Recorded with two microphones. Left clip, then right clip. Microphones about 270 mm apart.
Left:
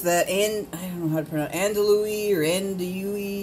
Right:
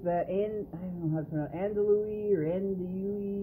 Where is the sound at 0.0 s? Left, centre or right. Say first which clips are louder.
Left 8 dB; centre.